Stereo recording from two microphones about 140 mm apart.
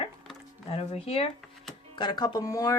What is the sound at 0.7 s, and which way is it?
Speech, 45° left (ahead or behind).